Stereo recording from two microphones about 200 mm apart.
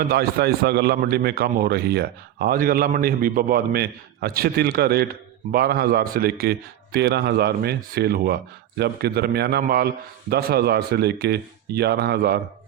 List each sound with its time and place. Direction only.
0.1 s a man's voice: 50° right (ahead or behind)